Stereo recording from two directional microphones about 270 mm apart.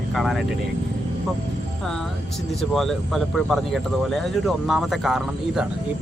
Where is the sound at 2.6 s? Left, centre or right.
Centre.